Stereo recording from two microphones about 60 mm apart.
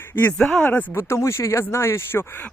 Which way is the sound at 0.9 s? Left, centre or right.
Left.